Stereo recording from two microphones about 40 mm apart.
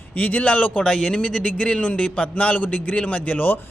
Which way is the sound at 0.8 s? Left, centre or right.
Left.